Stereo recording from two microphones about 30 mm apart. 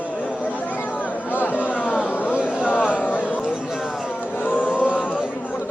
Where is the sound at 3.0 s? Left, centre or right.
Left.